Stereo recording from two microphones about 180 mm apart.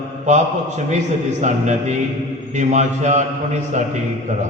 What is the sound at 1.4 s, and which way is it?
A man's voice, 40° right (ahead or behind).